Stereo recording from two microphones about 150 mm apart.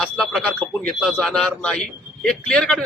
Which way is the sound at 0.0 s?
5° left (ahead or behind).